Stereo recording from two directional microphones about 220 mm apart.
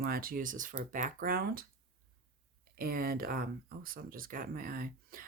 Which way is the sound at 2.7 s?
40° right (ahead or behind).